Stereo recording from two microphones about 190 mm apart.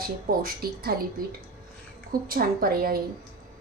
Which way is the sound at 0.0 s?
50° right (ahead or behind).